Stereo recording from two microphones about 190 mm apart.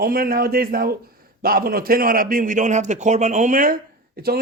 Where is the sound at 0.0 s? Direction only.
50° right (ahead or behind).